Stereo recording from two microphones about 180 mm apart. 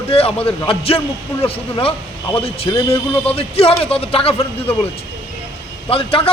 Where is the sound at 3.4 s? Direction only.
30° left (ahead or behind).